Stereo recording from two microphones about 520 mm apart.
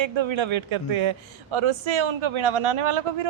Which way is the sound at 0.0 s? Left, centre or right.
Right.